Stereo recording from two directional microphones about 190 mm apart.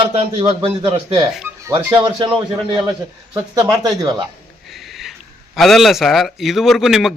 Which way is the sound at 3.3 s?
15° right (ahead or behind).